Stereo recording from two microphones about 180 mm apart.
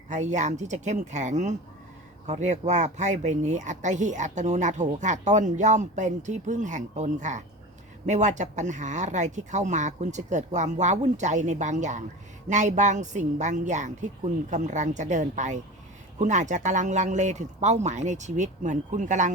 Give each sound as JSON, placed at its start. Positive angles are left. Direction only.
{"t": 0.1, "sound": "speech", "side_deg": -40}